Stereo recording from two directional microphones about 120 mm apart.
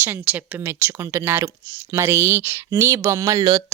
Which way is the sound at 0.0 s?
15° right (ahead or behind).